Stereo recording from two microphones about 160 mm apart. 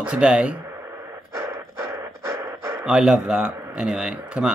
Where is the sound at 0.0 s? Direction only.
5° right (ahead or behind).